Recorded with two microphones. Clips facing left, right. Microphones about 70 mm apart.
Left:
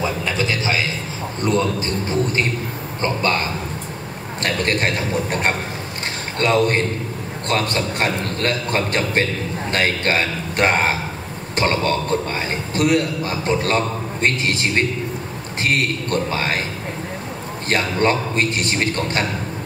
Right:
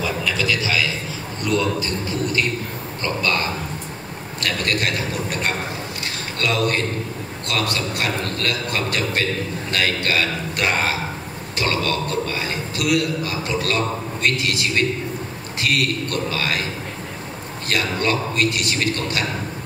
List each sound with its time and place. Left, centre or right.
0.0 s a sound: left
1.4 s a man's voice: left
17.6 s a man's voice: left